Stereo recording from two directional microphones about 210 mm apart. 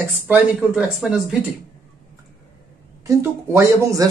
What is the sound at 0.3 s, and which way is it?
Speech, 5° right (ahead or behind).